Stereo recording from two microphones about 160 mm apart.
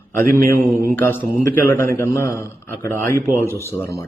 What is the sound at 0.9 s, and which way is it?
A man's voice, 10° left (ahead or behind).